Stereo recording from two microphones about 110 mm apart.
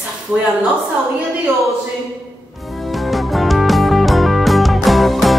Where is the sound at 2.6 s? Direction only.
Centre (ahead or behind).